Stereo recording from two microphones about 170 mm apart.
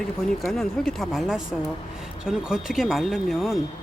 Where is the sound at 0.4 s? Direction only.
Centre (ahead or behind).